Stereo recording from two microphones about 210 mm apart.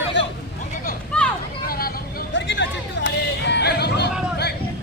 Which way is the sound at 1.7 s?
45° left (ahead or behind).